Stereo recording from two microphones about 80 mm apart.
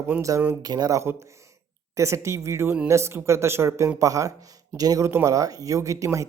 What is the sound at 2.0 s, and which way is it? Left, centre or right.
Speech, right.